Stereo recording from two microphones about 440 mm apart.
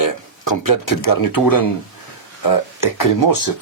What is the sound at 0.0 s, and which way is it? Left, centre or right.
Speech, left.